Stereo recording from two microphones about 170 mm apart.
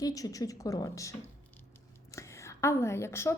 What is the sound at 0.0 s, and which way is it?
A woman's voice, 20° left (ahead or behind).